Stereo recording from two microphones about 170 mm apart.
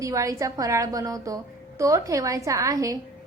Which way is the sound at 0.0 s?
20° right (ahead or behind).